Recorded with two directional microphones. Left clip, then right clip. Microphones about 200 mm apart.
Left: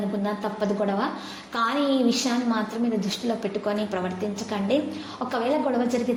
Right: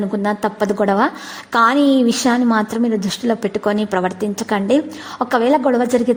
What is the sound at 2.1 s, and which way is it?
A woman's voice, 50° right (ahead or behind).